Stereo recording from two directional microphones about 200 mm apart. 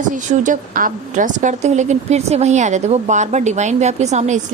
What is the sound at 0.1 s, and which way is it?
A woman's voice, 40° right (ahead or behind).